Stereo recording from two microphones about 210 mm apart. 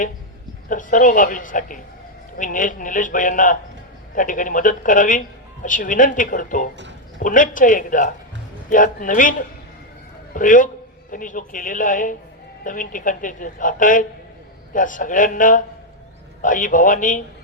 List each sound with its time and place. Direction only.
0.7 s a woman's voice: 40° left (ahead or behind)
10.3 s a woman's voice: 40° left (ahead or behind)